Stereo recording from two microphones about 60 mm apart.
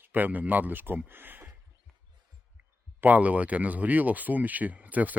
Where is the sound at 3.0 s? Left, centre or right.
Right.